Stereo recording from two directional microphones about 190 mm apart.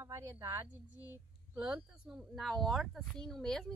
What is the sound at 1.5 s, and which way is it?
Speech, 5° right (ahead or behind).